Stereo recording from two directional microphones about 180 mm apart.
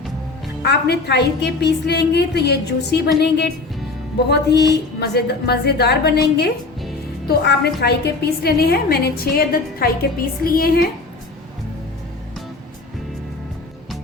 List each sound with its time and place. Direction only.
0.6 s a woman's voice: 65° left (ahead or behind)